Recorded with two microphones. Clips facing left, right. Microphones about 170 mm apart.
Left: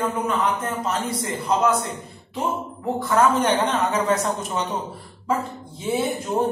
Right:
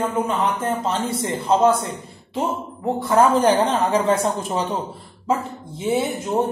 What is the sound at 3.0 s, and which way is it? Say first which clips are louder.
A woman's voice: right 3 dB; 30° right (ahead or behind).